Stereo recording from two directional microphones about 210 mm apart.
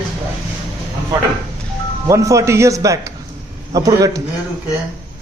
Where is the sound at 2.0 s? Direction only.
15° right (ahead or behind).